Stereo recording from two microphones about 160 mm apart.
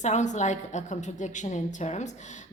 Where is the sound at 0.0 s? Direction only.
50° left (ahead or behind).